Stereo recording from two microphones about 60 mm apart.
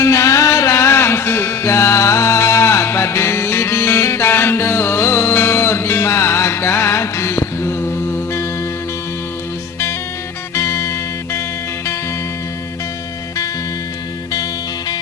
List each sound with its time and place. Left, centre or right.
0.0 s music: left
10.5 s music: left